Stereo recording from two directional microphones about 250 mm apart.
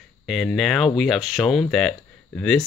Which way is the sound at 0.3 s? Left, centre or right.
Centre.